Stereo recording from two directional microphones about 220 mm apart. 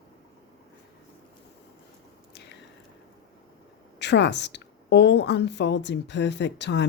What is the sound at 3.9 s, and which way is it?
A woman's voice, 50° left (ahead or behind).